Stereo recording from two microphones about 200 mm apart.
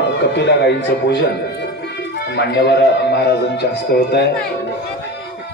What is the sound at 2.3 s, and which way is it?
Speech, 60° left (ahead or behind).